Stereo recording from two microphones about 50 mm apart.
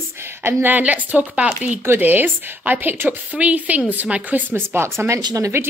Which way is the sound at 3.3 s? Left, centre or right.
Right.